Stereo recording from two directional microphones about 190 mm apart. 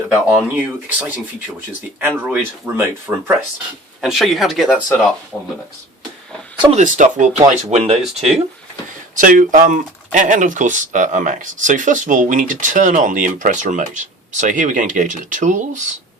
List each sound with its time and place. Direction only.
0.1 s speech: 5° right (ahead or behind)
6.7 s speech: 40° right (ahead or behind)
9.1 s speech: 45° right (ahead or behind)